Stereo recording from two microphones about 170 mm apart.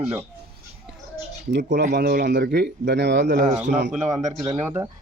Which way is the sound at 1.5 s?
90° right.